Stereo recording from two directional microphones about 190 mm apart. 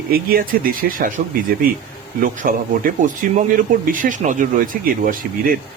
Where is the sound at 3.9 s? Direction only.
45° right (ahead or behind).